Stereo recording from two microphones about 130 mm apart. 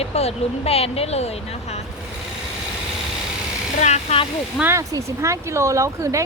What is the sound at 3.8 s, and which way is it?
Speech, 60° left (ahead or behind).